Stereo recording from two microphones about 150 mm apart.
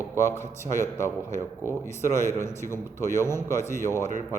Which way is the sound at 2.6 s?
20° left (ahead or behind).